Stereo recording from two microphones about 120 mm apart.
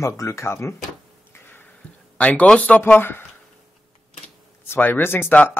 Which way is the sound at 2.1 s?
10° left (ahead or behind).